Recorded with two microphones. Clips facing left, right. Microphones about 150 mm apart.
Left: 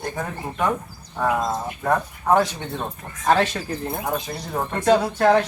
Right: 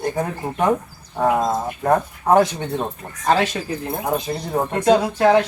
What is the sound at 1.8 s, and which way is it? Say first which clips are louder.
Speech: right 3 dB; 30° right (ahead or behind).